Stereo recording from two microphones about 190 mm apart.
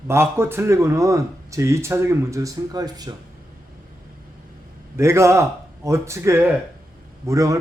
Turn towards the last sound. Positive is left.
turn(degrees=-15)  # may be behind; listen again after turning